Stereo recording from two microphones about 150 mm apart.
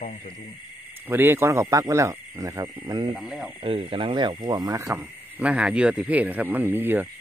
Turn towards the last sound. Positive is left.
turn(degrees=-15)  # may be behind; listen again after turning